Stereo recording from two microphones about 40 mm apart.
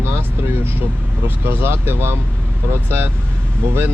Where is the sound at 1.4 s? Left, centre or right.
Right.